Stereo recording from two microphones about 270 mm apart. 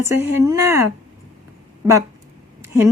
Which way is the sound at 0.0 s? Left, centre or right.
Centre.